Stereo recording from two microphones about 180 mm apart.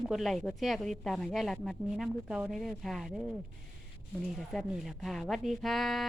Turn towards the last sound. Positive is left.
turn(degrees=0)  # may be behind; listen again after turning